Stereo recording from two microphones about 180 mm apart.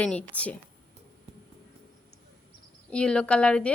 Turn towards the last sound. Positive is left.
turn(degrees=5)  # may be behind; listen again after turning